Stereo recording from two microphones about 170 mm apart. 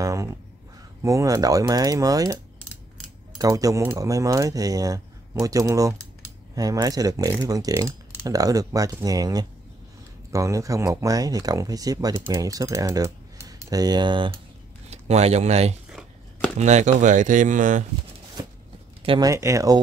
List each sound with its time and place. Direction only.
0.0 s a sound: 20° right (ahead or behind)
1.0 s speech: 20° right (ahead or behind)
14.9 s speech: 40° right (ahead or behind)
15.9 s chopping: 5° right (ahead or behind)
16.5 s speech: 45° right (ahead or behind)
19.0 s speech: 20° right (ahead or behind)